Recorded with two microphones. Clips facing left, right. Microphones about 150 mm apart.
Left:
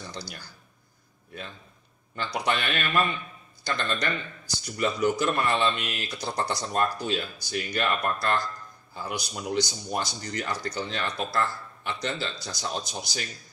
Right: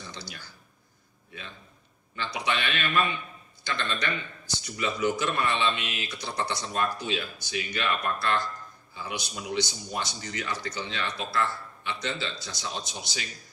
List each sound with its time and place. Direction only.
0.1 s speech: 40° left (ahead or behind)
2.1 s a man's voice: 45° left (ahead or behind)